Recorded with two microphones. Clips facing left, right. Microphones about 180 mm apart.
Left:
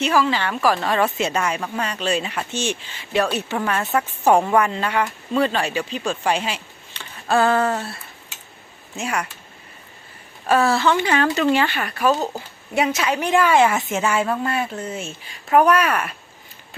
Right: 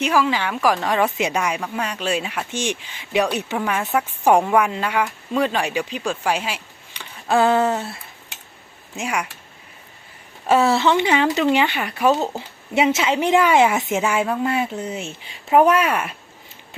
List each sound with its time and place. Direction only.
0.0 s a woman's voice: 10° right (ahead or behind)
9.0 s a woman's voice: 10° right (ahead or behind)
10.4 s a woman's voice: 20° right (ahead or behind)